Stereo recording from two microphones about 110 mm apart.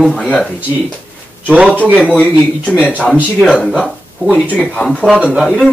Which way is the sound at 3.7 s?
10° right (ahead or behind).